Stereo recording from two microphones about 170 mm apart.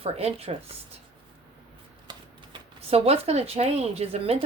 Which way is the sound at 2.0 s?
30° right (ahead or behind).